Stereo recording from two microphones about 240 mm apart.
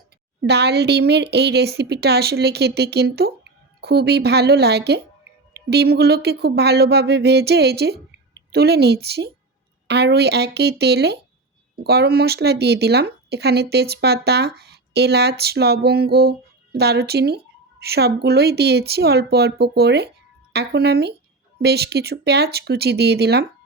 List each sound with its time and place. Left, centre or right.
0.4 s speech: right